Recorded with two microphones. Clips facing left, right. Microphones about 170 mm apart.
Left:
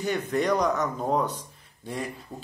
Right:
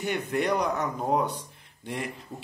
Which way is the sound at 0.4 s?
15° right (ahead or behind).